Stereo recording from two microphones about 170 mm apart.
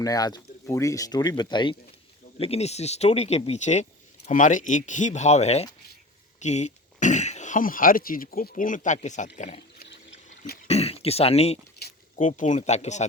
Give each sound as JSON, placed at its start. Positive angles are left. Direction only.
{"t": 0.0, "sound": "speech", "side_deg": 20}
{"t": 2.4, "sound": "speech", "side_deg": 40}
{"t": 10.4, "sound": "cough", "side_deg": 65}
{"t": 10.7, "sound": "a sound", "side_deg": 40}
{"t": 12.2, "sound": "speech", "side_deg": 45}